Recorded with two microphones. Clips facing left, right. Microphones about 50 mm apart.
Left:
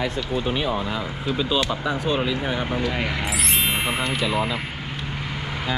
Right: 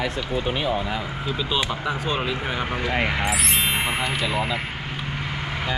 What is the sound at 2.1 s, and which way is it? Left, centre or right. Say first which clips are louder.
Speech: left 3 dB; right.